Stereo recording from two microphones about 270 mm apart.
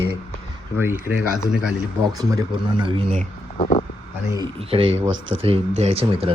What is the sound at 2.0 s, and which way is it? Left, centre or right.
Speech, centre.